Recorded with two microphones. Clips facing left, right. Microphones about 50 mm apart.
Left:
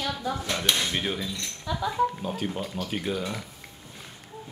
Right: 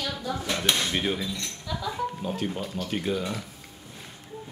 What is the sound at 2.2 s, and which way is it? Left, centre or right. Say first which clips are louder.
Speech: even; centre.